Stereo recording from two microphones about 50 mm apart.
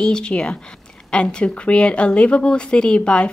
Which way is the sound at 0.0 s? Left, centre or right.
Centre.